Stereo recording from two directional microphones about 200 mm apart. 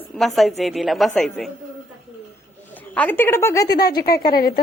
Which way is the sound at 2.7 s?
10° left (ahead or behind).